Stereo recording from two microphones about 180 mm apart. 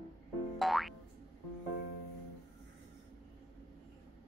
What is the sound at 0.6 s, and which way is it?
Boing, centre (ahead or behind).